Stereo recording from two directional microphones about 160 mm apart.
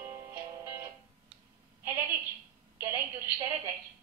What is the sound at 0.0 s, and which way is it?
Music, 15° right (ahead or behind).